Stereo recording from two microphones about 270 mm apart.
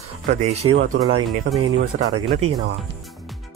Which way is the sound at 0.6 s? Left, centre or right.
Centre.